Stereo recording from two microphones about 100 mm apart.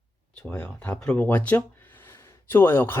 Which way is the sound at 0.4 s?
15° left (ahead or behind).